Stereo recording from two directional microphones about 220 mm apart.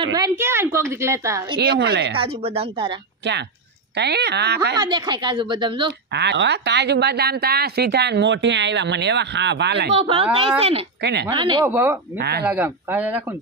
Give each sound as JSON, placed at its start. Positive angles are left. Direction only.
{"t": 0.0, "sound": "a woman's voice", "side_deg": -15}
{"t": 1.6, "sound": "a woman's voice", "side_deg": -45}
{"t": 2.1, "sound": "speech", "side_deg": -25}
{"t": 3.9, "sound": "a woman's voice", "side_deg": -50}
{"t": 4.7, "sound": "speech", "side_deg": -20}
{"t": 6.1, "sound": "a woman's voice", "side_deg": -50}
{"t": 9.9, "sound": "speech", "side_deg": -25}
{"t": 11.0, "sound": "speech", "side_deg": -50}
{"t": 11.2, "sound": "speech", "side_deg": -20}
{"t": 11.6, "sound": "a woman's voice", "side_deg": -10}
{"t": 12.2, "sound": "a woman's voice", "side_deg": -50}
{"t": 12.4, "sound": "a woman's voice", "side_deg": -10}